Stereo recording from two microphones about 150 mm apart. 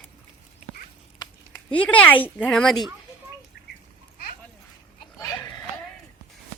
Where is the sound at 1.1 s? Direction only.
25° left (ahead or behind).